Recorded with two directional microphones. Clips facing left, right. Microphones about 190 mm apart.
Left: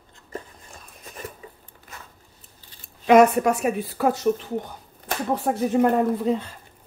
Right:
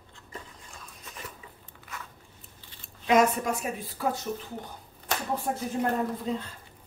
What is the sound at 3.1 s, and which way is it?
Speech, 65° left (ahead or behind).